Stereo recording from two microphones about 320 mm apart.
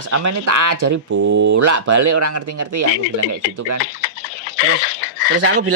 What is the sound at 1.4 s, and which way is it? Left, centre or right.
Speech, right.